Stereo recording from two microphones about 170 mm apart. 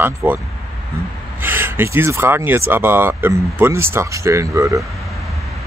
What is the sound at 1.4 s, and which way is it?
Speech, 10° right (ahead or behind).